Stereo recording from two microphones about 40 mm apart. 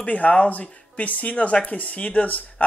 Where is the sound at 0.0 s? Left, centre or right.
Left.